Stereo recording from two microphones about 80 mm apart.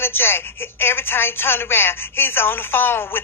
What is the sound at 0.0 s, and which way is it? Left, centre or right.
A woman's voice, left.